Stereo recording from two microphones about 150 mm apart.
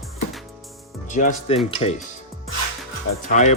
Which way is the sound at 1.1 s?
55° left (ahead or behind).